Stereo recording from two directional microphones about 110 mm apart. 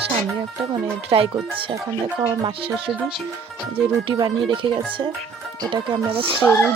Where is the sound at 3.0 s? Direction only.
10° right (ahead or behind).